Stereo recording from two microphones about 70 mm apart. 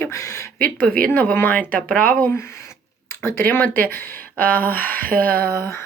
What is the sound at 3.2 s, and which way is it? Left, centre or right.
Speech, left.